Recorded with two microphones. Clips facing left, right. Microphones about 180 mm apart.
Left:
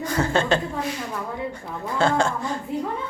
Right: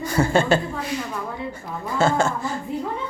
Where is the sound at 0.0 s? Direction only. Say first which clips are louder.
Right 3 dB; 10° right (ahead or behind).